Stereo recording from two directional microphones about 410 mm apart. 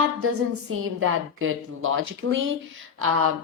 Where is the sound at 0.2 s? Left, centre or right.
Right.